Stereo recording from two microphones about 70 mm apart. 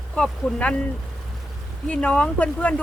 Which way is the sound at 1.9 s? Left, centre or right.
Centre.